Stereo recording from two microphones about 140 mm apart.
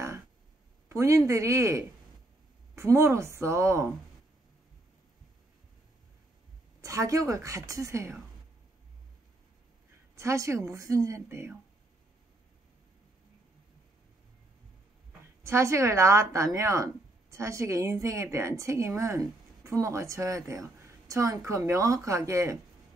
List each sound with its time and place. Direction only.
0.8 s speech: 20° right (ahead or behind)
6.8 s speech: 20° right (ahead or behind)
10.1 s speech: 20° right (ahead or behind)
15.4 s speech: 20° right (ahead or behind)